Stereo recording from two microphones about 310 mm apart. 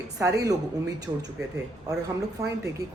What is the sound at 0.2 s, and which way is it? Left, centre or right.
Speech, centre.